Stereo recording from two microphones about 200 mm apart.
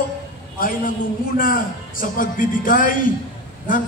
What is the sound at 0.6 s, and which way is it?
A man's voice, 45° left (ahead or behind).